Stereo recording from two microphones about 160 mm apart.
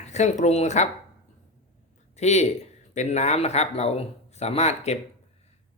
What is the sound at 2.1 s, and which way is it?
Speech, 45° left (ahead or behind).